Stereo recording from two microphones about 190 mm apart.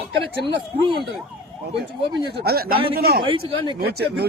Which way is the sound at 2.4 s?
55° right (ahead or behind).